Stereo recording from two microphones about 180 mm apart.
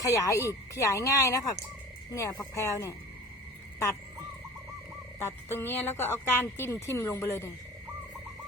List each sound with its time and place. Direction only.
0.0 s a woman's voice: 15° left (ahead or behind)
5.5 s a woman's voice: 10° left (ahead or behind)